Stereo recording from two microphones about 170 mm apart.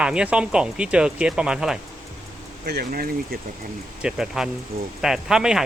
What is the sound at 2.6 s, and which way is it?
Speech, 70° right (ahead or behind).